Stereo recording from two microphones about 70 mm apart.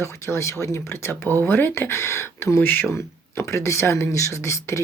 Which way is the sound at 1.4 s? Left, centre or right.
Left.